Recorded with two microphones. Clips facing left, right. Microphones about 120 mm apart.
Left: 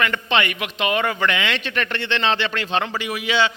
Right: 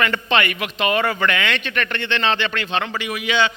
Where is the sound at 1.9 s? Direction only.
25° left (ahead or behind).